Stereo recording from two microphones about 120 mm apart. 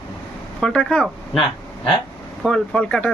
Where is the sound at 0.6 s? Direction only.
5° left (ahead or behind).